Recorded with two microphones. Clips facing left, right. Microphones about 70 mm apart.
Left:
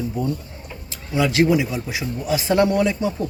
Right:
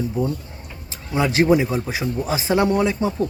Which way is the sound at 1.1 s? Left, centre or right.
Right.